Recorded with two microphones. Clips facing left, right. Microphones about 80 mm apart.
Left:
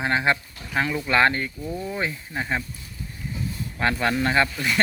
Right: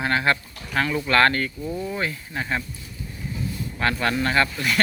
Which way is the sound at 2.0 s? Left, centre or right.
Centre.